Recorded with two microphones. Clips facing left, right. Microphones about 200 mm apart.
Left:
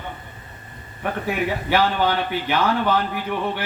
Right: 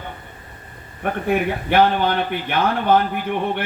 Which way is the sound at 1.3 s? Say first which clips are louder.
Right 4 dB; 55° right (ahead or behind).